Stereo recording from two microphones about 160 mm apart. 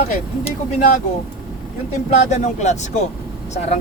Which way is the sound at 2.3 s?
45° left (ahead or behind).